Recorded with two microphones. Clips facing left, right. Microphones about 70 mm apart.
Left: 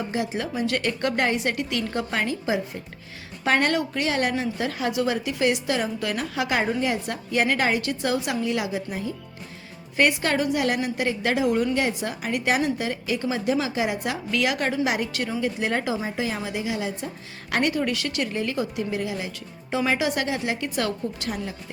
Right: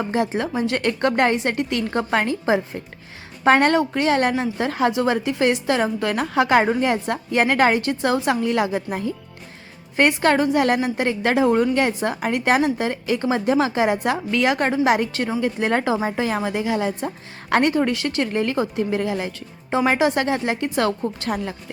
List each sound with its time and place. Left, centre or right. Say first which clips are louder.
0.0 s a woman's voice: right 5 dB; right
0.4 s speech: right 3 dB; right
0.8 s a woman's voice: right 7 dB; right
10.0 s a woman's voice: right 5 dB; right
18.3 s a woman's voice: right 5 dB; right